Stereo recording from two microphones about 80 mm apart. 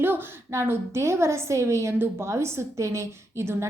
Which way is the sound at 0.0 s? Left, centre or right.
Right.